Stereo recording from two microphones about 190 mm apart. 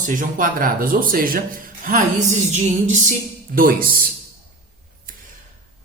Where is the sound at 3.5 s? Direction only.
50° right (ahead or behind).